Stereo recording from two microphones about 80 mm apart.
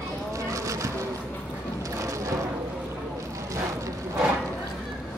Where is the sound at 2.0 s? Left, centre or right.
Right.